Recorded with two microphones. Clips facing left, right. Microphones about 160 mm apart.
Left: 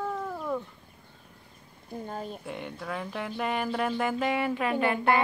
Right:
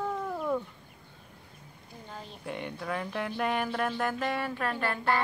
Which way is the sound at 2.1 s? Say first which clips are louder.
Left 7 dB; 45° left (ahead or behind).